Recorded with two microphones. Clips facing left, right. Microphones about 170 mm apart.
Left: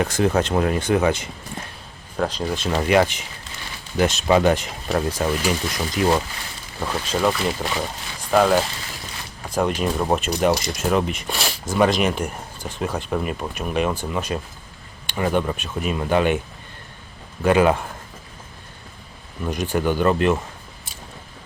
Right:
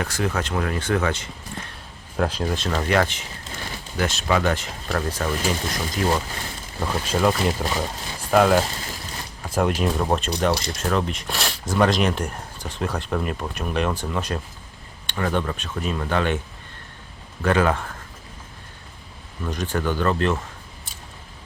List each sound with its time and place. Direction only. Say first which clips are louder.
0.0 s speech: left 6 dB; 20° left (ahead or behind)
2.1 s speech: even; 5° right (ahead or behind)
2.6 s speech: left 4 dB; 15° left (ahead or behind)
6.7 s speech: even; centre (ahead or behind)
17.4 s speech: left 4 dB; 15° left (ahead or behind)
19.5 s speech: left 3 dB; 10° left (ahead or behind)